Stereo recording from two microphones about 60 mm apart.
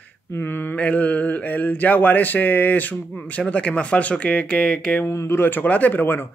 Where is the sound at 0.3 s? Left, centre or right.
Left.